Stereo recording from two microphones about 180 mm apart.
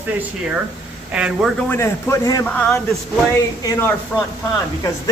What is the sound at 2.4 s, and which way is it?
Speech, 5° left (ahead or behind).